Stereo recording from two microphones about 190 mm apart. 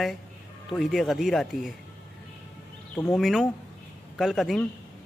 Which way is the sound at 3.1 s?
Centre (ahead or behind).